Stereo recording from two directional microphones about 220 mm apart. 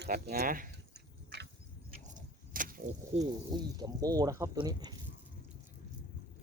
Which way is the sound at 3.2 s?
20° right (ahead or behind).